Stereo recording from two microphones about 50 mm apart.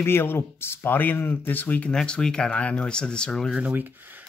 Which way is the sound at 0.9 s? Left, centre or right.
Left.